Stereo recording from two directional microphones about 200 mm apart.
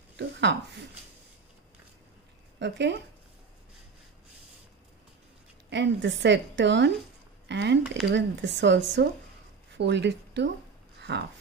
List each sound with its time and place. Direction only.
0.2 s speech: 60° right (ahead or behind)
2.6 s a woman's voice: 60° right (ahead or behind)
5.7 s a woman's voice: 60° right (ahead or behind)
11.0 s a sound: 60° right (ahead or behind)